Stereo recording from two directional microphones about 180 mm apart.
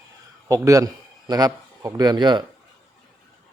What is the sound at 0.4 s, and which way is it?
A man's voice, 20° right (ahead or behind).